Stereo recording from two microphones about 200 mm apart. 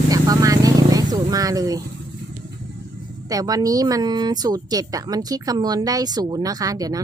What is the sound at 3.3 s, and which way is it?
Speech, 20° right (ahead or behind).